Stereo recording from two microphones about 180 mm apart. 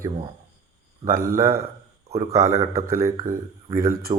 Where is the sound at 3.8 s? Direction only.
50° right (ahead or behind).